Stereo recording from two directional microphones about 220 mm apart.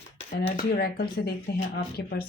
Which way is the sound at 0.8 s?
45° left (ahead or behind).